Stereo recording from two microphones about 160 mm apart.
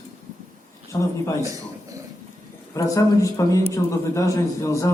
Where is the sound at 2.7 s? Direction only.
20° left (ahead or behind).